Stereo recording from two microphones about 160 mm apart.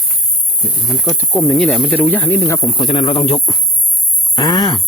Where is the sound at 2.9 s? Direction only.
35° left (ahead or behind).